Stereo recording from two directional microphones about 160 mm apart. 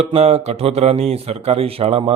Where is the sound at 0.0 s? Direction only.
45° right (ahead or behind).